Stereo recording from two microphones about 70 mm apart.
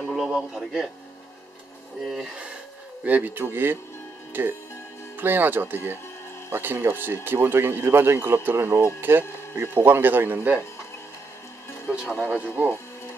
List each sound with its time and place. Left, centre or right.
0.1 s a man's voice: centre
2.0 s a man's voice: centre
3.0 s speech: right
12.2 s speech: right